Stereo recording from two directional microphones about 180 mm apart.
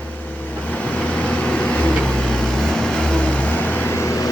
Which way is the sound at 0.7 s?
10° left (ahead or behind).